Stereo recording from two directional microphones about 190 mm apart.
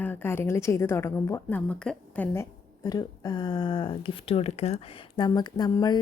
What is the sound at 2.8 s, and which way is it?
Speech, 20° left (ahead or behind).